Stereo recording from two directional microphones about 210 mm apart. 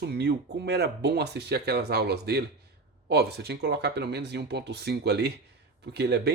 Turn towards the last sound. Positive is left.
turn(degrees=-50)  # may be behind; listen again after turning